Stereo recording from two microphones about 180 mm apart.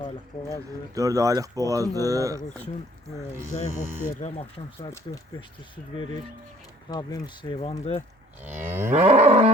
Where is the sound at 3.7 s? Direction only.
10° right (ahead or behind).